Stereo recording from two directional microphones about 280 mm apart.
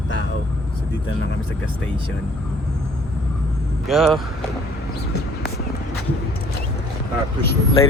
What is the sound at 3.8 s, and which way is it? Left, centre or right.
Speech, centre.